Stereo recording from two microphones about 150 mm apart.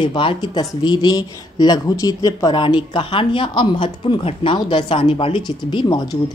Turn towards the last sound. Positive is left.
turn(degrees=25)  # may be behind; listen again after turning